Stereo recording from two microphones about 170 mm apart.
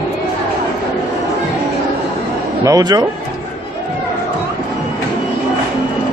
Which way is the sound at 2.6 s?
20° right (ahead or behind).